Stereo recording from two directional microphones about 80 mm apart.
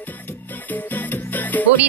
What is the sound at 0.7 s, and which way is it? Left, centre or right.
Music, left.